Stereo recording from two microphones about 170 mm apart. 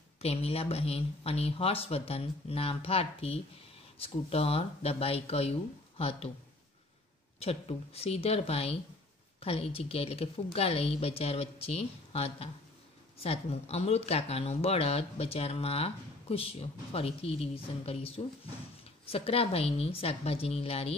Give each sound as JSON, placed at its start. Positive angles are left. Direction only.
{"t": 0.2, "sound": "speech", "side_deg": 35}
{"t": 7.3, "sound": "speech", "side_deg": 35}